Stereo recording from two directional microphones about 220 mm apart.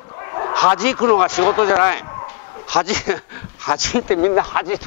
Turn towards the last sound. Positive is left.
turn(degrees=10)  # may be behind; listen again after turning